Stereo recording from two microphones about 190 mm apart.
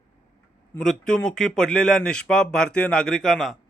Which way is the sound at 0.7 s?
5° left (ahead or behind).